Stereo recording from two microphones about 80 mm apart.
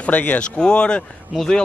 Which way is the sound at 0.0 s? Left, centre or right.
Centre.